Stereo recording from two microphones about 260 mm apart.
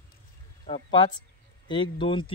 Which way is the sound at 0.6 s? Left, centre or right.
Left.